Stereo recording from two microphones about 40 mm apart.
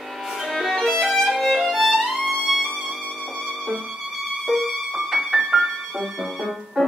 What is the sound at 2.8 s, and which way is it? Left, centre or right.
Music, centre.